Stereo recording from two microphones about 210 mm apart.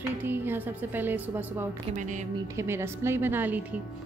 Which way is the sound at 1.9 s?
35° right (ahead or behind).